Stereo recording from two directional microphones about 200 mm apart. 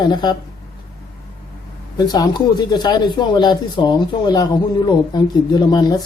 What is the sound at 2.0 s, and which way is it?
Speech, 20° left (ahead or behind).